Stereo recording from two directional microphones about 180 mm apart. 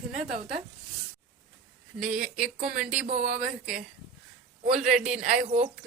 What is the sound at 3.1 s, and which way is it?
Speech, 45° right (ahead or behind).